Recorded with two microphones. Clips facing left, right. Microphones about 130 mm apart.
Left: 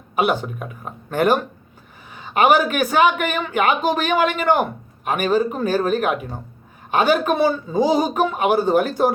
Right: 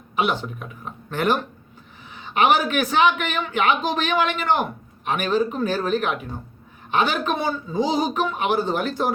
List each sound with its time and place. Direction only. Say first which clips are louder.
0.2 s speech: left 3 dB; 45° left (ahead or behind)